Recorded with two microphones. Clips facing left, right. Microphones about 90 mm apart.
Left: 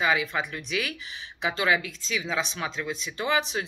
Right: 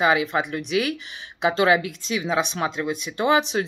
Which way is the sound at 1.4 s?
35° right (ahead or behind).